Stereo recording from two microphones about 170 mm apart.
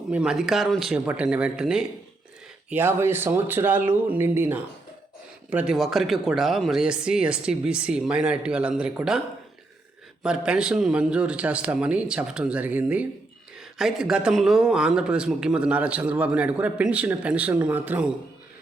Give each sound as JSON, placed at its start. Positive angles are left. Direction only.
{"t": 0.1, "sound": "a man's voice", "side_deg": -5}
{"t": 10.2, "sound": "a man's voice", "side_deg": -5}